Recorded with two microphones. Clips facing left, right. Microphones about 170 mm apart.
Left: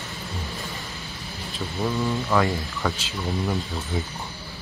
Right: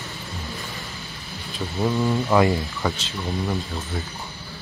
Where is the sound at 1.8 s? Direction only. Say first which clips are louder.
Right 3 dB; 15° right (ahead or behind).